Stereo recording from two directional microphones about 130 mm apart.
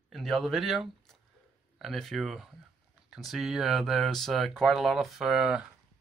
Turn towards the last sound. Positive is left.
turn(degrees=-5)  # may be behind; listen again after turning